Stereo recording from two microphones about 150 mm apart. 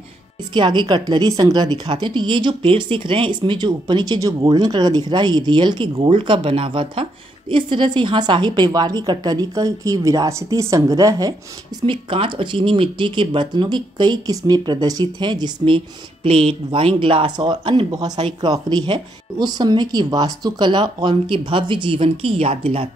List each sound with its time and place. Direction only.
0.5 s a woman's voice: 30° right (ahead or behind)
11.8 s speech: 35° right (ahead or behind)